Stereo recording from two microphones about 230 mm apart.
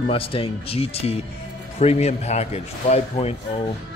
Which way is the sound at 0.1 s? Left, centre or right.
Left.